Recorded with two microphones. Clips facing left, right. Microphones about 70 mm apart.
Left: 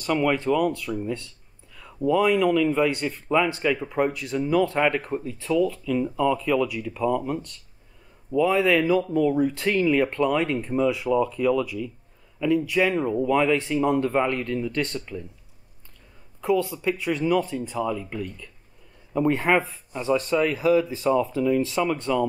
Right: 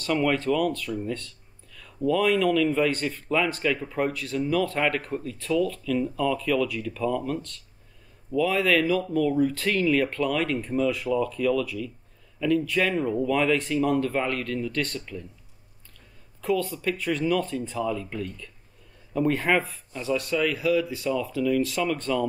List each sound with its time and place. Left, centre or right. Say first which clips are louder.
0.0 s a man's voice: left 1 dB; centre
16.3 s a man's voice: left 3 dB; centre
20.6 s speech: left 4 dB; left; by 22.2 s centre